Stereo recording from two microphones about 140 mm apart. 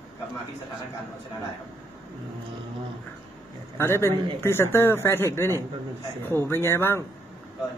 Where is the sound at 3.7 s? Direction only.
20° left (ahead or behind).